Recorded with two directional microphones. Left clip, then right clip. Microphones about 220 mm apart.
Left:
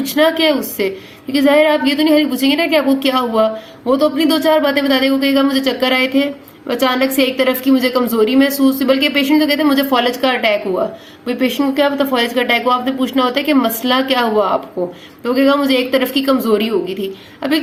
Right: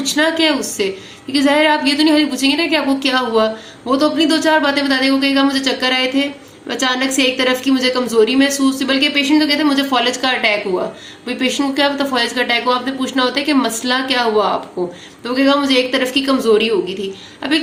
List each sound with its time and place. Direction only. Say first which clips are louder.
0.0 s a woman's voice: left 2 dB; 20° left (ahead or behind)